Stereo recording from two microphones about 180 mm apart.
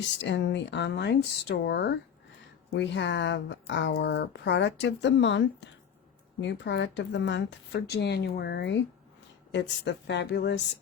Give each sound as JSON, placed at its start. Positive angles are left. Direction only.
{"t": 0.2, "sound": "speech", "side_deg": 80}